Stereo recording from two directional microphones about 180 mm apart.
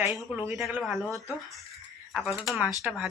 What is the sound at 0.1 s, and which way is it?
Speech, centre (ahead or behind).